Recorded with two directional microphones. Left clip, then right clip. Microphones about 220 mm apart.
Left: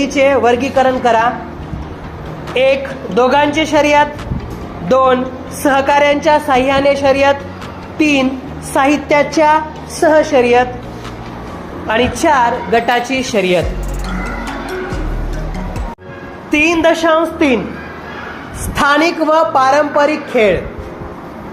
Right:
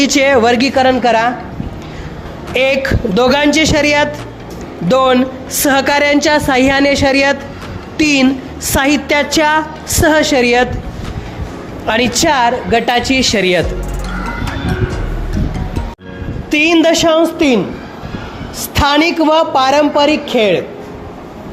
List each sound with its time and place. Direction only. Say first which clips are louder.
0.0 s a woman's voice: right 1 dB; 50° right (ahead or behind)
2.5 s a woman's voice: even; 50° right (ahead or behind)
11.9 s a woman's voice: even; 55° right (ahead or behind)
16.5 s a woman's voice: right 1 dB; 45° right (ahead or behind)
18.8 s a woman's voice: even; 45° right (ahead or behind)